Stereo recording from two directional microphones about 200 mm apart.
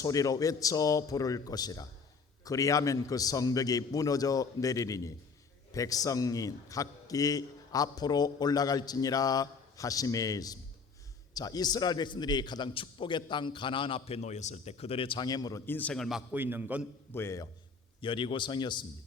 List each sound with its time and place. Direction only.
0.0 s a man's voice: 15° left (ahead or behind); by 16.8 s 10° right (ahead or behind)
17.1 s a man's voice: 15° left (ahead or behind)
18.0 s a man's voice: 25° left (ahead or behind)